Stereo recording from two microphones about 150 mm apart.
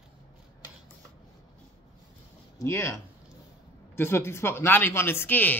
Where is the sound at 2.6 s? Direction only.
20° left (ahead or behind).